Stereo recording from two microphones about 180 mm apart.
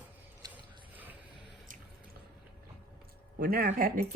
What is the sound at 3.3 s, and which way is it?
Speech, 55° right (ahead or behind).